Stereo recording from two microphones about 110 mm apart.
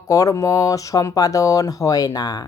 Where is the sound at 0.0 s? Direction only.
30° left (ahead or behind).